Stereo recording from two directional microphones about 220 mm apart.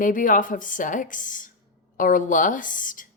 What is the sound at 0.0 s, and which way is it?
A woman's voice, 35° left (ahead or behind).